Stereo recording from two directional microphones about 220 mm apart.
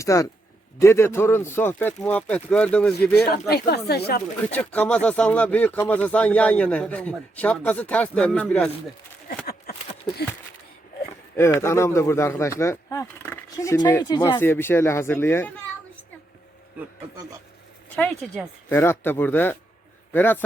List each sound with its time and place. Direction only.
0.0 s speech: 15° left (ahead or behind)
3.3 s speech: 45° left (ahead or behind)
4.5 s speech: 5° left (ahead or behind)
9.7 s a sound: 45° left (ahead or behind)
11.3 s speech: 10° left (ahead or behind)
17.9 s speech: 5° left (ahead or behind)